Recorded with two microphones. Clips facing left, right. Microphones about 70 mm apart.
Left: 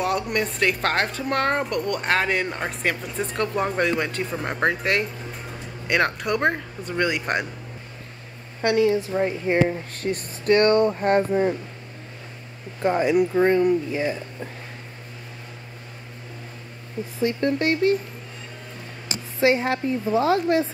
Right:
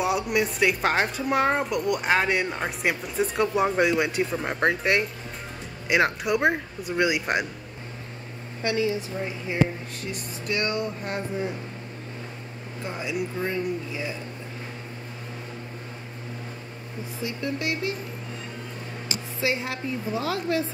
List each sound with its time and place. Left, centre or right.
0.0 s speech: centre
8.6 s speech: left
12.8 s speech: left
17.2 s a woman's voice: left
19.4 s a woman's voice: left